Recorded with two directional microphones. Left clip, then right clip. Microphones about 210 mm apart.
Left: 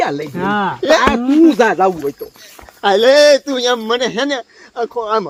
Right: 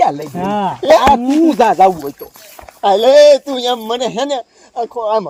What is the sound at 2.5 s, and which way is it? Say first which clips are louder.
Speech: right 1 dB; 20° right (ahead or behind).